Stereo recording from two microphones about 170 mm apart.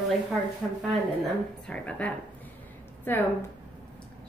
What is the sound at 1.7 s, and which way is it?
A woman's voice, 5° left (ahead or behind).